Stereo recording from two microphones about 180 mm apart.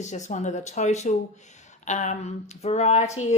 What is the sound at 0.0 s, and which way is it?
Speech, 40° left (ahead or behind).